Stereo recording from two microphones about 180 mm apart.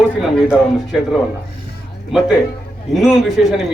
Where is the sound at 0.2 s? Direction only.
Centre (ahead or behind).